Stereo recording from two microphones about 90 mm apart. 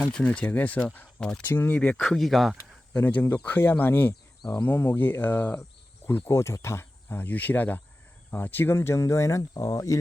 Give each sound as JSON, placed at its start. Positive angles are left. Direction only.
{"t": 0.0, "sound": "speech", "side_deg": 15}
{"t": 2.0, "sound": "speech", "side_deg": 0}
{"t": 2.9, "sound": "speech", "side_deg": 20}